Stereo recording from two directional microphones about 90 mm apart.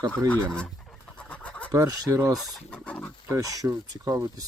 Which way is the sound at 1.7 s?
40° right (ahead or behind).